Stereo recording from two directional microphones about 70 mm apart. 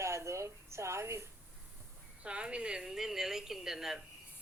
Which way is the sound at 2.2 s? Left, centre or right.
Centre.